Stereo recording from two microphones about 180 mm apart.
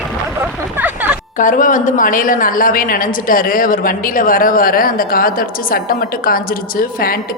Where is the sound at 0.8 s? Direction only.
10° right (ahead or behind).